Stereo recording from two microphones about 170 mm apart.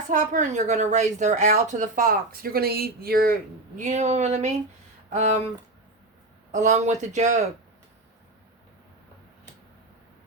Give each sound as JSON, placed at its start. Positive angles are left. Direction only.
{"t": 0.1, "sound": "a woman's voice", "side_deg": -50}
{"t": 3.8, "sound": "a woman's voice", "side_deg": -45}
{"t": 6.5, "sound": "a woman's voice", "side_deg": -45}